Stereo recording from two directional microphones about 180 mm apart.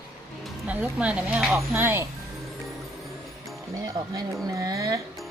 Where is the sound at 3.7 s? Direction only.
20° right (ahead or behind).